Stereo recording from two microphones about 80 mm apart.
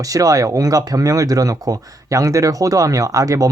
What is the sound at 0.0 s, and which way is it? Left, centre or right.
Speech, right.